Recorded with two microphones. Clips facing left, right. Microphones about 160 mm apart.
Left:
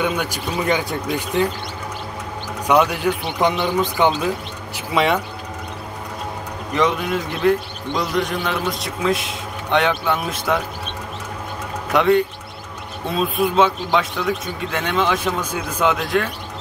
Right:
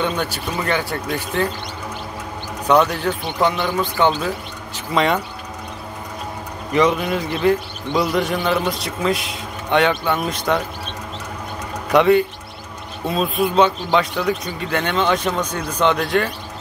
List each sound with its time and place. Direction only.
0.0 s speech: 15° left (ahead or behind)
2.7 s speech: 10° left (ahead or behind)
4.7 s speech: 5° left (ahead or behind)
6.7 s speech: centre (ahead or behind)
11.9 s speech: centre (ahead or behind)